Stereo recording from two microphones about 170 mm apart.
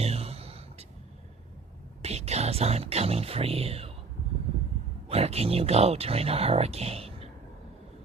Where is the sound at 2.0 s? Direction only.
40° right (ahead or behind).